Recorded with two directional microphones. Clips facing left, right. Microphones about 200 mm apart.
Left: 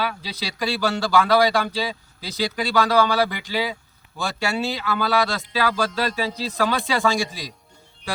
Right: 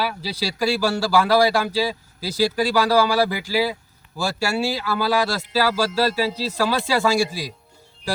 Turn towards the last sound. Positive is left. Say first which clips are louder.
# right 2 dB
turn(degrees=-10)  # may be behind; listen again after turning